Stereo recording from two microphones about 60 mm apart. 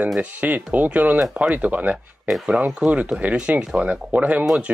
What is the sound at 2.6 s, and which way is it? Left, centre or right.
Speech, right.